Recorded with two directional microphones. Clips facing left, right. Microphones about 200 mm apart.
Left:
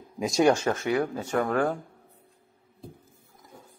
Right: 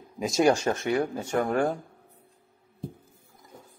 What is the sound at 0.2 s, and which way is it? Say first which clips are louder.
Speech: left 1 dB; centre (ahead or behind).